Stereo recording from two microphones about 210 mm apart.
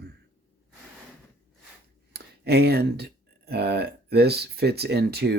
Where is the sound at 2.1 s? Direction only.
50° right (ahead or behind).